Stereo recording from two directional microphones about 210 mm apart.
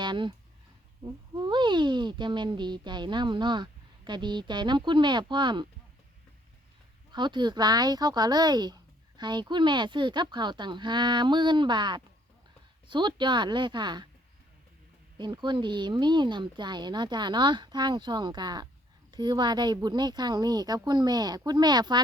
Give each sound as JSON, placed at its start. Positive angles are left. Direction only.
{"t": 0.0, "sound": "speech", "side_deg": -20}
{"t": 7.1, "sound": "speech", "side_deg": -20}
{"t": 15.2, "sound": "speech", "side_deg": -20}